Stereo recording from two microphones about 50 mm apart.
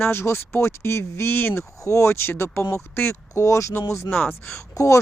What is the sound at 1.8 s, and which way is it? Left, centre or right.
Speech, left.